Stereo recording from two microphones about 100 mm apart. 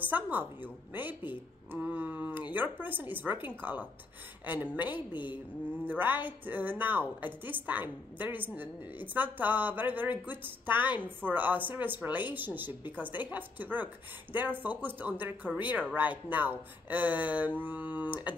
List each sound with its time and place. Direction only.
0.0 s a woman's voice: 15° right (ahead or behind)